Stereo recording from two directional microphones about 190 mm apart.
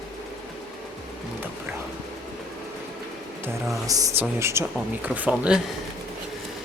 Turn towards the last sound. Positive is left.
turn(degrees=-5)  # may be behind; listen again after turning